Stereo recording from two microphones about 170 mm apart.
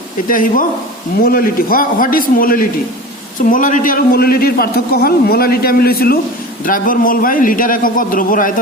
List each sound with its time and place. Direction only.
0.3 s a man's voice: 55° left (ahead or behind)